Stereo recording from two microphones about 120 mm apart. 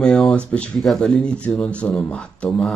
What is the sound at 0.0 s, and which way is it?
A man's voice, 5° left (ahead or behind).